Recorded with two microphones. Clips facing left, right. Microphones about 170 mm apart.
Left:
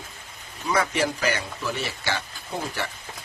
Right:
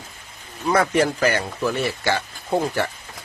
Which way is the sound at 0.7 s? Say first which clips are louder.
Right 5 dB; 50° right (ahead or behind).